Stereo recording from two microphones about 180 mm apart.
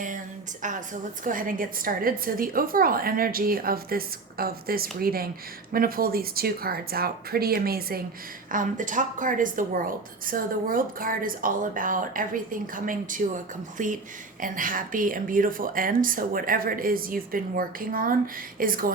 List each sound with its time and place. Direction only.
1.2 s a woman's voice: 50° right (ahead or behind)
8.5 s a woman's voice: 45° right (ahead or behind)